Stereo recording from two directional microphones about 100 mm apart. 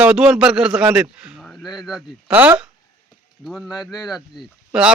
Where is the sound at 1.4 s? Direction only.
Centre (ahead or behind).